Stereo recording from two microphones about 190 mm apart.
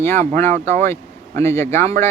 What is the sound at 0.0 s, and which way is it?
Speech, 15° left (ahead or behind).